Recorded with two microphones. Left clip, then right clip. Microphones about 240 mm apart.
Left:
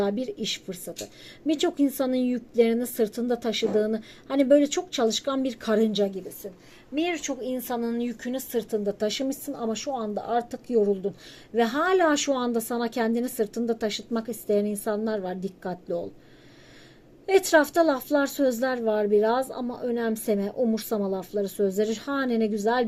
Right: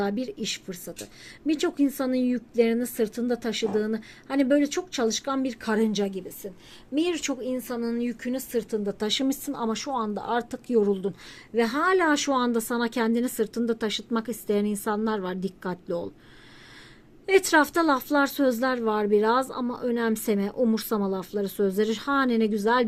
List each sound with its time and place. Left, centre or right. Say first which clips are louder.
0.0 s speech: left 2 dB; centre
6.9 s speech: right 1 dB; right
7.9 s speech: even; centre
11.5 s speech: even; centre
17.2 s speech: even; centre